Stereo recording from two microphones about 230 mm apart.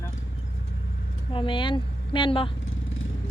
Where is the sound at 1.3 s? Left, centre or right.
Left.